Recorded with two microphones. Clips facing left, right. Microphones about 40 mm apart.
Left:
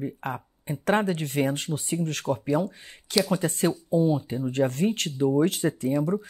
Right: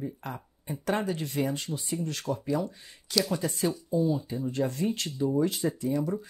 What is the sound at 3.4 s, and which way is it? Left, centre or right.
Speech, left.